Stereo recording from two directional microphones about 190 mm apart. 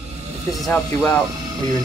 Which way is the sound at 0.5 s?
Centre (ahead or behind).